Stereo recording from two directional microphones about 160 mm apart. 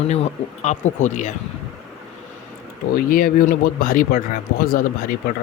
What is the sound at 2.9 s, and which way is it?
Speech, 65° left (ahead or behind).